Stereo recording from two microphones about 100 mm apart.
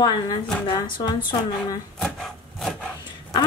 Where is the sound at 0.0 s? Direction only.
45° left (ahead or behind).